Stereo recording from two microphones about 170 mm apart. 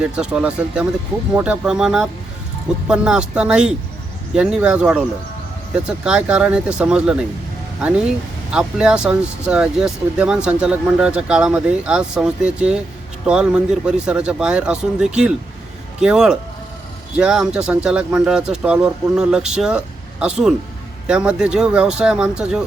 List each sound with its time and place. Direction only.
0.0 s speech: 5° right (ahead or behind)